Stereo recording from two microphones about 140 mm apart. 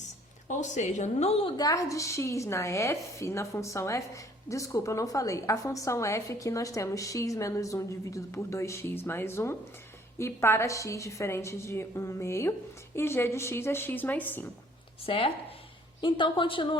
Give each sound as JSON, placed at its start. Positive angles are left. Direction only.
{"t": 0.4, "sound": "a woman's voice", "side_deg": 60}
{"t": 1.5, "sound": "a woman's voice", "side_deg": 25}
{"t": 15.0, "sound": "a woman's voice", "side_deg": 40}